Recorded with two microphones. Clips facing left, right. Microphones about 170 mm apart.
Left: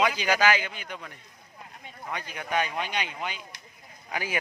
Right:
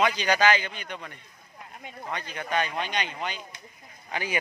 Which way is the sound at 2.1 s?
10° left (ahead or behind).